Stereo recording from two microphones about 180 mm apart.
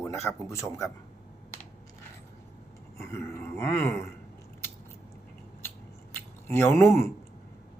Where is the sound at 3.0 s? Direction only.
15° left (ahead or behind).